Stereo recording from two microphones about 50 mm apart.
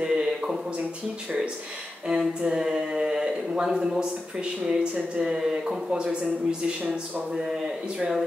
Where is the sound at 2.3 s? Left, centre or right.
Centre.